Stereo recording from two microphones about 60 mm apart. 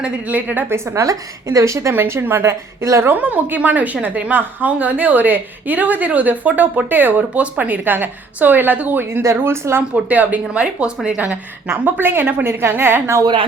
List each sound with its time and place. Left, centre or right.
0.0 s a woman's voice: right
0.7 s a woman's voice: right
1.0 s a woman's voice: right
1.9 s a woman's voice: right
3.1 s a woman's voice: right
9.4 s a woman's voice: right
9.9 s a woman's voice: right
11.7 s a woman's voice: right